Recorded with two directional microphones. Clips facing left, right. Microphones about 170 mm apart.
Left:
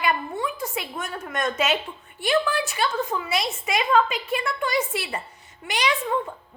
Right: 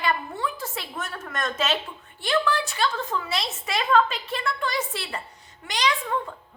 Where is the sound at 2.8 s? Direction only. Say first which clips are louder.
Left 1 dB; 15° left (ahead or behind).